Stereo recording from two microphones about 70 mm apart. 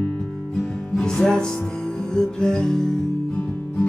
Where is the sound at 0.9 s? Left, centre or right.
Centre.